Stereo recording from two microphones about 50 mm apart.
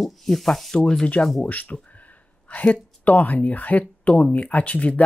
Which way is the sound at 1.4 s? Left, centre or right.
Left.